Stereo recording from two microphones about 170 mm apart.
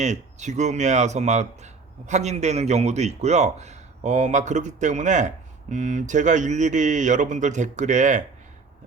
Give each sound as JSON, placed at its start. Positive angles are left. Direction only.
{"t": 0.0, "sound": "speech", "side_deg": -45}